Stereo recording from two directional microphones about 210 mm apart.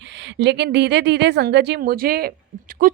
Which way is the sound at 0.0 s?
55° right (ahead or behind).